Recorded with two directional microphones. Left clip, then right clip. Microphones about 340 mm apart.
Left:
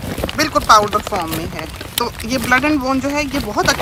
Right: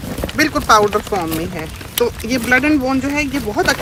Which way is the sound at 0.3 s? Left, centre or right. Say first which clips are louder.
Left 1 dB; centre.